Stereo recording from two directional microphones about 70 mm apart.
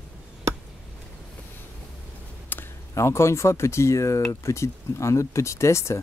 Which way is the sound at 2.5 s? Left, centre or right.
Left.